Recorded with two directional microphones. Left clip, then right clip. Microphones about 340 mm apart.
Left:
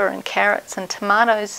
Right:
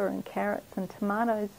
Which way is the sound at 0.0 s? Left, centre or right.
Centre.